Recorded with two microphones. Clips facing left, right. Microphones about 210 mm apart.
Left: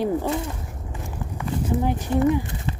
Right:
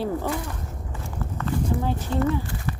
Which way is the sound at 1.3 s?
15° left (ahead or behind).